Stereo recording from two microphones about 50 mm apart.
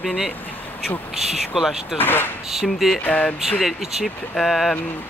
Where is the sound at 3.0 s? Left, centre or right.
Left.